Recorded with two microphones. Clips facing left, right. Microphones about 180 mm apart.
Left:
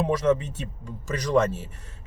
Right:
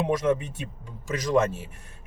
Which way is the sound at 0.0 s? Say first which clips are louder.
Left 2 dB; 15° right (ahead or behind).